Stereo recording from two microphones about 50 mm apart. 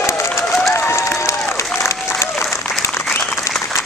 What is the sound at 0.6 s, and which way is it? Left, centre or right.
Applause, left.